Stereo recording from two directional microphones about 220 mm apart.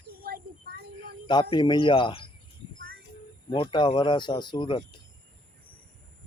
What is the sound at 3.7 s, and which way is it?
Speech, 20° left (ahead or behind).